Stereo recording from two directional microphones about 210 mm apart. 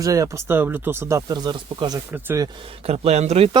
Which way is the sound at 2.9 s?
30° right (ahead or behind).